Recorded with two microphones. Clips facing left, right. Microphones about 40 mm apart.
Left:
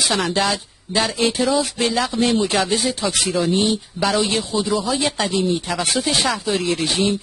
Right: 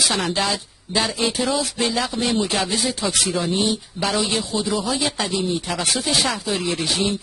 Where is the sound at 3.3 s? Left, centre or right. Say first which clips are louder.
Left 3 dB; centre.